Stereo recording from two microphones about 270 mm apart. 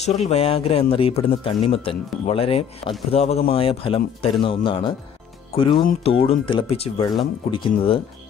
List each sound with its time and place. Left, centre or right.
0.0 s speech: left